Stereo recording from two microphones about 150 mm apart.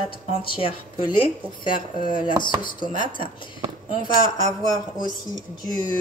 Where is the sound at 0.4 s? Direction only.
35° left (ahead or behind).